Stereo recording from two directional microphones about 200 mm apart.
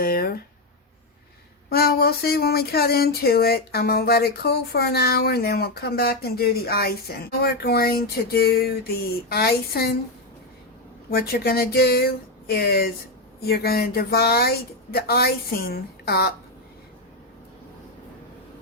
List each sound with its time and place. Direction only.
0.0 s a sound: 45° left (ahead or behind)
1.7 s speech: 50° left (ahead or behind)
11.1 s speech: 50° left (ahead or behind)